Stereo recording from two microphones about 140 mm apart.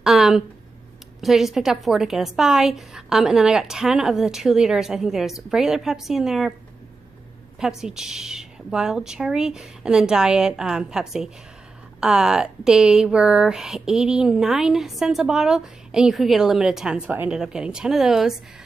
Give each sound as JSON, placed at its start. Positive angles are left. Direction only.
{"t": 0.0, "sound": "a sound", "side_deg": -5}
{"t": 1.2, "sound": "a woman's voice", "side_deg": -5}
{"t": 7.6, "sound": "a woman's voice", "side_deg": -5}